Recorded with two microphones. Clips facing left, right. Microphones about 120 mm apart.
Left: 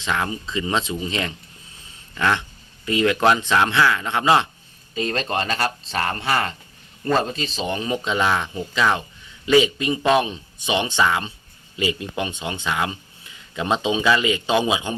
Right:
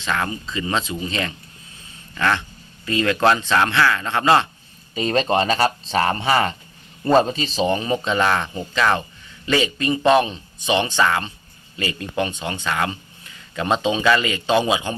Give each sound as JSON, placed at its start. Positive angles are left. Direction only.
{"t": 0.0, "sound": "a man's voice", "side_deg": 20}
{"t": 4.9, "sound": "speech", "side_deg": -10}
{"t": 7.7, "sound": "a man's voice", "side_deg": 0}